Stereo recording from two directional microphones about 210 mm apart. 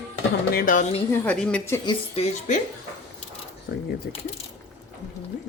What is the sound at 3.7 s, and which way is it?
Speech, 50° left (ahead or behind).